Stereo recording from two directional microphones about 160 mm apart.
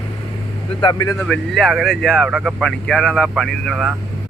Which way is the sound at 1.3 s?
Centre (ahead or behind).